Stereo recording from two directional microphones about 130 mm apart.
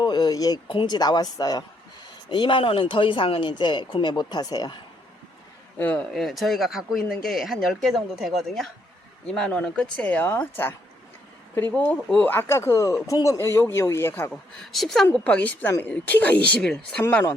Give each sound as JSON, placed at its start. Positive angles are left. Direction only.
{"t": 0.0, "sound": "speech", "side_deg": 35}
{"t": 5.8, "sound": "a woman's voice", "side_deg": 10}
{"t": 14.6, "sound": "a woman's voice", "side_deg": 5}